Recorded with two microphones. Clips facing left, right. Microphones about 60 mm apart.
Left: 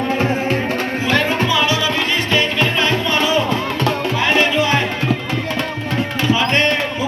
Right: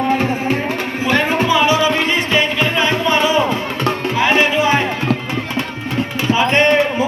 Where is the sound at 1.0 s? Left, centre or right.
Centre.